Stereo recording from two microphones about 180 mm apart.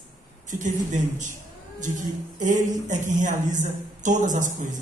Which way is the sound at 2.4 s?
45° right (ahead or behind).